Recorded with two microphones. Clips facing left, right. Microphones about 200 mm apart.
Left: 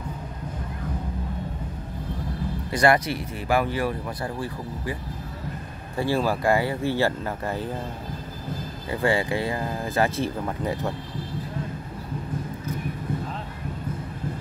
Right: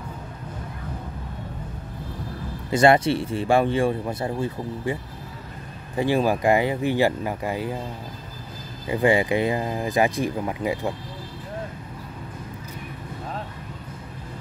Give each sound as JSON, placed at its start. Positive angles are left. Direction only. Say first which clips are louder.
{"t": 2.7, "sound": "speech", "louder": "right 4 dB", "side_deg": -25}
{"t": 5.9, "sound": "speech", "louder": "right 3 dB", "side_deg": -15}
{"t": 8.8, "sound": "speech", "louder": "right 4 dB", "side_deg": -15}